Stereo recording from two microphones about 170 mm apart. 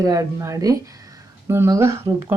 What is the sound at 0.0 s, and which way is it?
Speech, 20° right (ahead or behind).